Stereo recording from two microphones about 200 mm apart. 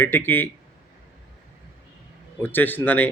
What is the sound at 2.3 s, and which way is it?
Speech, 10° left (ahead or behind).